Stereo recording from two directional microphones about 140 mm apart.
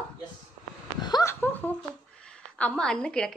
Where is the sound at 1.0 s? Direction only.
30° left (ahead or behind).